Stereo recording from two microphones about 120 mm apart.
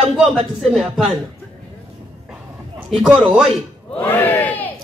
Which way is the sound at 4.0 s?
15° left (ahead or behind).